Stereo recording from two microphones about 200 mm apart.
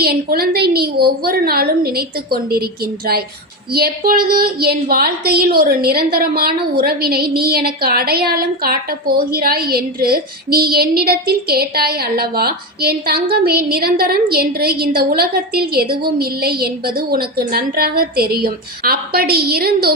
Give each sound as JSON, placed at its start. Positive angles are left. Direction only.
{"t": 0.0, "sound": "a woman's voice", "side_deg": -50}